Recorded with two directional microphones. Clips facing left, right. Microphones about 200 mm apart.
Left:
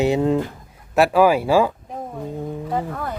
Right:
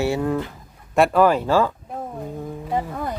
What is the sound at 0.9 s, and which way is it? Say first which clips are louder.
Speech: left 1 dB; 5° left (ahead or behind).